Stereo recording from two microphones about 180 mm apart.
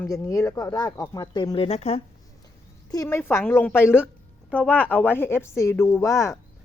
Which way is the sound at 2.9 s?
15° left (ahead or behind).